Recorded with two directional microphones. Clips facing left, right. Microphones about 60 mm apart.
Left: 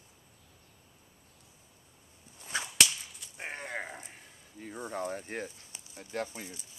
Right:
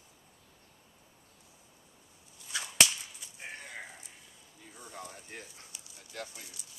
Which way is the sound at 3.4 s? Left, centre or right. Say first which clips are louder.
Left 6 dB; left.